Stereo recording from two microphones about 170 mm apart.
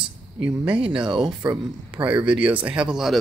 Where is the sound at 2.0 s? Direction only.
10° right (ahead or behind).